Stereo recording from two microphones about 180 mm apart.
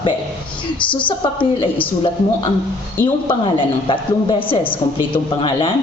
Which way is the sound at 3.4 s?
30° left (ahead or behind).